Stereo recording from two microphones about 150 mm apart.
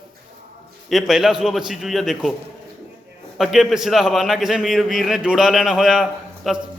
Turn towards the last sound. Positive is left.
turn(degrees=-5)  # may be behind; listen again after turning